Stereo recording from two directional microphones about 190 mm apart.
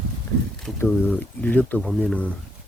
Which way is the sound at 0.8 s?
10° left (ahead or behind).